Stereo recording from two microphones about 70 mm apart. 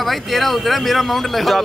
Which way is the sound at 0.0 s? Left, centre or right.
Centre.